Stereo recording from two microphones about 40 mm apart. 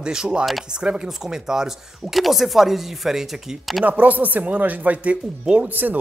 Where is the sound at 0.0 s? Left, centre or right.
Centre.